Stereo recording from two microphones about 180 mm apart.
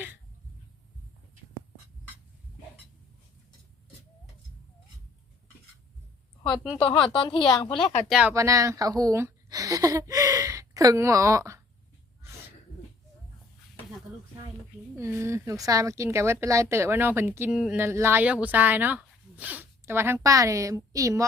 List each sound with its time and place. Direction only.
6.7 s speech: 30° left (ahead or behind)
8.0 s speech: 5° right (ahead or behind)
8.3 s speech: 15° right (ahead or behind)
14.9 s speech: 15° right (ahead or behind)